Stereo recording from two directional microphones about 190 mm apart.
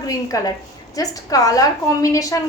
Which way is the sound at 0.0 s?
20° left (ahead or behind).